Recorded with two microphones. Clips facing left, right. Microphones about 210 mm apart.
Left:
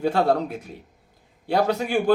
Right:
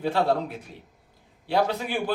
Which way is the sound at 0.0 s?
45° left (ahead or behind).